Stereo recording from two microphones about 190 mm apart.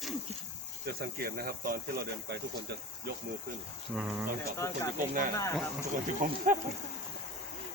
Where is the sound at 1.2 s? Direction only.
50° right (ahead or behind).